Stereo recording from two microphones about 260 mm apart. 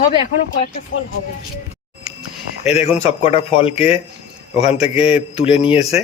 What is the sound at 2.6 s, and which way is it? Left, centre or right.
Speech, left.